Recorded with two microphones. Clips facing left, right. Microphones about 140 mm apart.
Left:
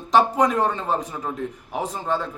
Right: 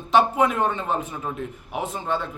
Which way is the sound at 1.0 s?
15° left (ahead or behind).